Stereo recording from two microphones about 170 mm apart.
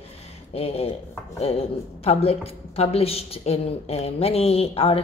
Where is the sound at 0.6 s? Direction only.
35° left (ahead or behind).